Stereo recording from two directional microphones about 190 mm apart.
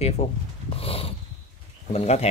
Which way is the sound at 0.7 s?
30° left (ahead or behind).